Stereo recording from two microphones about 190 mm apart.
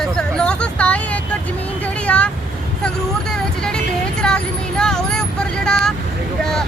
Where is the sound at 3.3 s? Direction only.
5° left (ahead or behind).